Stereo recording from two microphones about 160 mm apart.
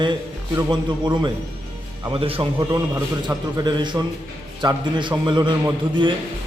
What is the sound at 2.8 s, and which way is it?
A man's voice, 15° right (ahead or behind).